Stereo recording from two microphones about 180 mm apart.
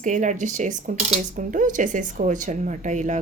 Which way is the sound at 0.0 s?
45° right (ahead or behind).